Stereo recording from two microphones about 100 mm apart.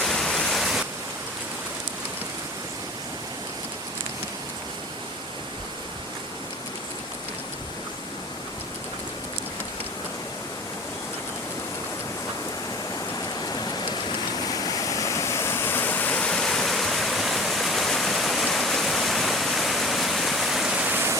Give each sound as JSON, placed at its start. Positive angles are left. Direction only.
{"t": 0.0, "sound": "waterfall", "side_deg": 5}
{"t": 13.5, "sound": "waterfall", "side_deg": 40}
{"t": 20.9, "sound": "a sound", "side_deg": -20}